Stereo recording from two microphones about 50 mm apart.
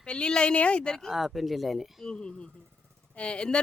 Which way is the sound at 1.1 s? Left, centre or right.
Centre.